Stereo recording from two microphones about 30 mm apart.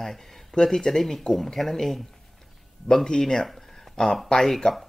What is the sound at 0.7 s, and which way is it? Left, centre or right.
Speech, centre.